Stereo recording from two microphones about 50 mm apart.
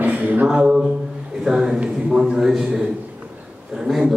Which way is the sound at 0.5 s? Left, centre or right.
Right.